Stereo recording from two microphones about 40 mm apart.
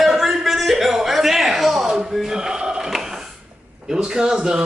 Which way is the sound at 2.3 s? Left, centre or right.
Centre.